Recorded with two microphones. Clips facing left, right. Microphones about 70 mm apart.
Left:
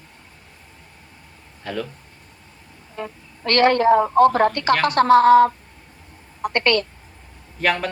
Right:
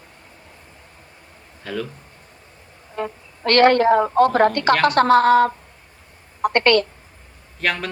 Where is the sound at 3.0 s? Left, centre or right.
Right.